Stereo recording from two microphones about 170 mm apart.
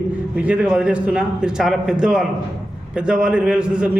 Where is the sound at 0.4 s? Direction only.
5° right (ahead or behind).